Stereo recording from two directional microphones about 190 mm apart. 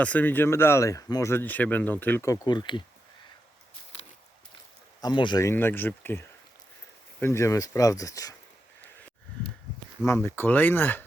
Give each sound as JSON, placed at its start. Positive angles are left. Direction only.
{"t": 0.0, "sound": "speech", "side_deg": 10}
{"t": 4.9, "sound": "speech", "side_deg": 25}
{"t": 10.1, "sound": "speech", "side_deg": 10}